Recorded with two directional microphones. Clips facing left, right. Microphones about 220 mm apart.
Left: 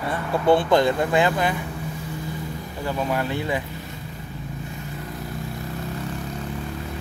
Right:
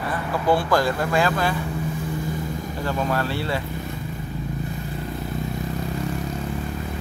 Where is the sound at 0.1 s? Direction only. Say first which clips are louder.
Left 3 dB; 25° left (ahead or behind).